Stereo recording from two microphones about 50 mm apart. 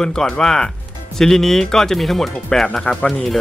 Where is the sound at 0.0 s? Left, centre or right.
Centre.